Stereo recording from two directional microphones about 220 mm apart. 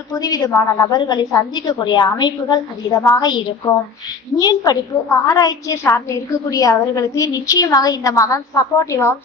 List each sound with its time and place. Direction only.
0.1 s a woman's voice: 15° left (ahead or behind)